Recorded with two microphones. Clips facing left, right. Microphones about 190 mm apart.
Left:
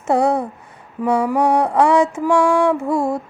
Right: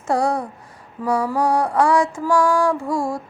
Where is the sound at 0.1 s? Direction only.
25° left (ahead or behind).